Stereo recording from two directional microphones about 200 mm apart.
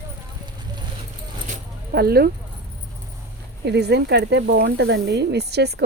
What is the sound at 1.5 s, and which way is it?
Keys jangling, 50° right (ahead or behind).